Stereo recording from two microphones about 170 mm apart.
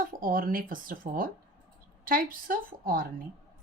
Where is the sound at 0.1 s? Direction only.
55° right (ahead or behind).